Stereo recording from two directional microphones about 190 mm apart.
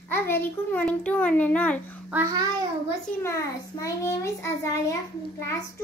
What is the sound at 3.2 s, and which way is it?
A child's voice, 15° left (ahead or behind).